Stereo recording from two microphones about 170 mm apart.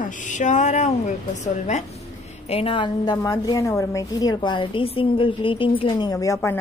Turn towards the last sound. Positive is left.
turn(degrees=15)  # may be behind; listen again after turning